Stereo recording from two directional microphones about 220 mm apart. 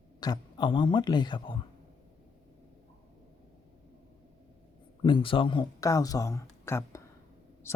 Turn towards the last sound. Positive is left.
turn(degrees=10)  # may be behind; listen again after turning